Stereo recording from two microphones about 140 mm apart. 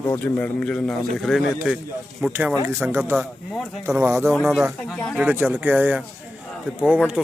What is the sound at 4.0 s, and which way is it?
Speech, 15° right (ahead or behind).